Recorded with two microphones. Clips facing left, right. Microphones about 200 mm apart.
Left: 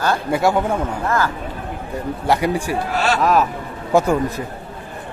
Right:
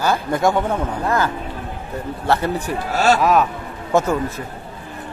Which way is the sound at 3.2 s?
Centre (ahead or behind).